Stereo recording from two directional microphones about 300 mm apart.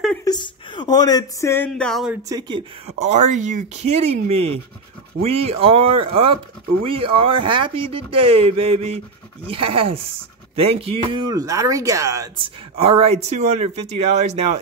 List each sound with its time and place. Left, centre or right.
0.2 s speech: centre
2.2 s speech: centre